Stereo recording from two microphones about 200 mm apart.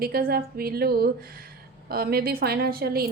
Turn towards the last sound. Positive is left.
turn(degrees=-50)  # may be behind; listen again after turning